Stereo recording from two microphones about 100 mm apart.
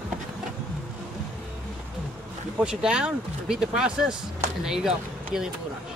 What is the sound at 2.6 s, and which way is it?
Speech, 5° right (ahead or behind).